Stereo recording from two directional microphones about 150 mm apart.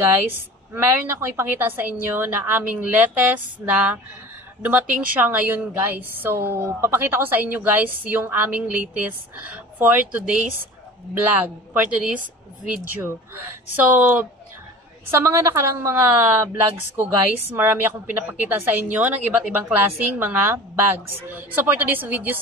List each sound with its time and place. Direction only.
0.7 s a woman's voice: 15° right (ahead or behind)